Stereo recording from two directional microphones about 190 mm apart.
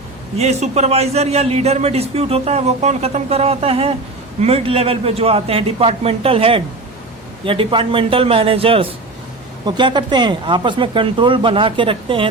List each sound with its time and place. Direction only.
0.3 s a man's voice: 35° right (ahead or behind)